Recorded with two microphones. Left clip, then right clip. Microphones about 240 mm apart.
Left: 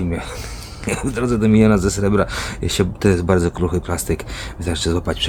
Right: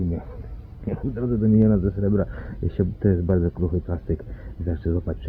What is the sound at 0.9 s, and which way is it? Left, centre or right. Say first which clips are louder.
Speech: left 7 dB; centre.